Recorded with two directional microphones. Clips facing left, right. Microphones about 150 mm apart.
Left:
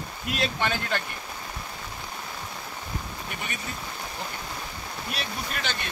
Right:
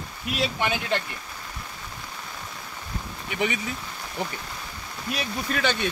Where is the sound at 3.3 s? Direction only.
90° right.